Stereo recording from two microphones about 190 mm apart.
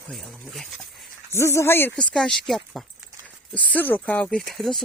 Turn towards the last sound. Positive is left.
turn(degrees=0)  # may be behind; listen again after turning